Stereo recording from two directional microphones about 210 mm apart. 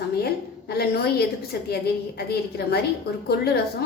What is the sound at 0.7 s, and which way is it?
A woman's voice, 50° left (ahead or behind).